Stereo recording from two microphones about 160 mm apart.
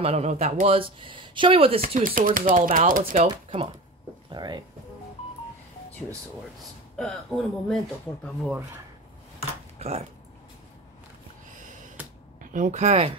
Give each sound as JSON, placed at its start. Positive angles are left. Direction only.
{"t": 0.0, "sound": "speech", "side_deg": -40}
{"t": 1.8, "sound": "speech", "side_deg": -60}
{"t": 3.3, "sound": "speech", "side_deg": -35}
{"t": 7.0, "sound": "speech", "side_deg": 5}
{"t": 9.8, "sound": "speech", "side_deg": -40}
{"t": 11.6, "sound": "a sound", "side_deg": -50}
{"t": 12.5, "sound": "speech", "side_deg": -50}